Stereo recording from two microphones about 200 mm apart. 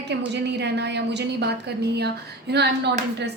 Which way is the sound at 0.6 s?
60° right (ahead or behind).